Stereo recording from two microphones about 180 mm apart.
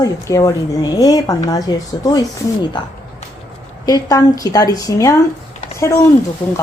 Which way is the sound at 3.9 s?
20° left (ahead or behind).